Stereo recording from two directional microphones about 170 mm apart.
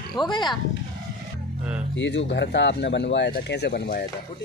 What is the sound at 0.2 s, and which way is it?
Speech, 25° left (ahead or behind).